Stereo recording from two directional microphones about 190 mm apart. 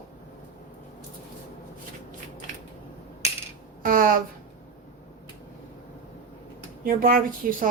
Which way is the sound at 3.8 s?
45° right (ahead or behind).